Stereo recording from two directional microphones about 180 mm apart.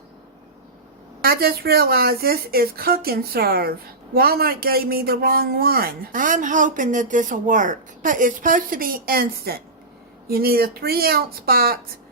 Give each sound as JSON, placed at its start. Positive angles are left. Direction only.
{"t": 1.2, "sound": "speech", "side_deg": -55}